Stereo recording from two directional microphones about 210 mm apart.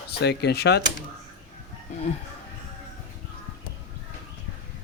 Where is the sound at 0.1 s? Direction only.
50° left (ahead or behind).